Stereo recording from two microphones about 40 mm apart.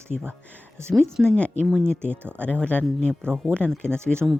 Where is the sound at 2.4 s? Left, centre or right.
Left.